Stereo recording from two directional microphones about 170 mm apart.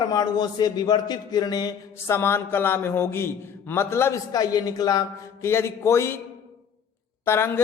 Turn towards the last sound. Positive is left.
turn(degrees=15)  # may be behind; listen again after turning